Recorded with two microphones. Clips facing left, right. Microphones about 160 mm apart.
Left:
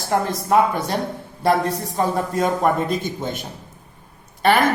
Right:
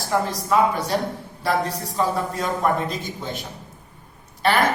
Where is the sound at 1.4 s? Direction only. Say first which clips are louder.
Left 4 dB; 55° left (ahead or behind).